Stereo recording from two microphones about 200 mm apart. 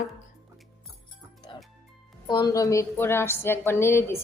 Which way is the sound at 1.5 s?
25° left (ahead or behind).